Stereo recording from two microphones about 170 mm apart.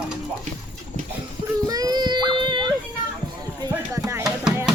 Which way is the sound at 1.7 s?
20° right (ahead or behind).